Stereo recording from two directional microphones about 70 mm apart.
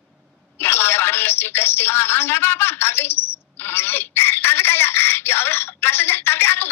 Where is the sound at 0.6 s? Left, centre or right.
Left.